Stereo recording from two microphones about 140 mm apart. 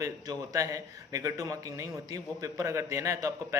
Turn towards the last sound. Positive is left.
turn(degrees=-25)  # may be behind; listen again after turning